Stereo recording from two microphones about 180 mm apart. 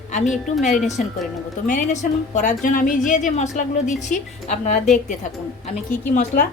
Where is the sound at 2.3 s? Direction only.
45° left (ahead or behind).